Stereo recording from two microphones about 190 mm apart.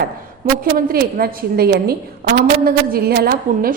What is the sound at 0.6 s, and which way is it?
A woman's voice, 50° right (ahead or behind).